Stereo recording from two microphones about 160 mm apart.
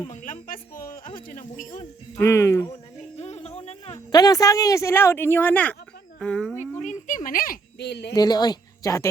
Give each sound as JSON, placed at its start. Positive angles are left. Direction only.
{"t": 0.1, "sound": "a sound", "side_deg": 55}
{"t": 1.3, "sound": "speech", "side_deg": 55}
{"t": 2.1, "sound": "speech", "side_deg": 15}
{"t": 3.2, "sound": "music", "side_deg": 40}
{"t": 3.9, "sound": "speech", "side_deg": 25}
{"t": 6.7, "sound": "a sound", "side_deg": 50}
{"t": 8.1, "sound": "speech", "side_deg": 25}